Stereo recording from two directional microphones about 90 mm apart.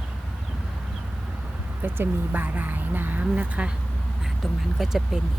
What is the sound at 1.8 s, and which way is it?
Speech, 20° right (ahead or behind).